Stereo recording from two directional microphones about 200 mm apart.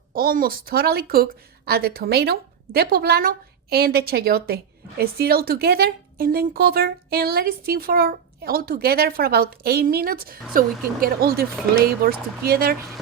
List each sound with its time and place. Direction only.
0.1 s a woman's voice: 45° right (ahead or behind)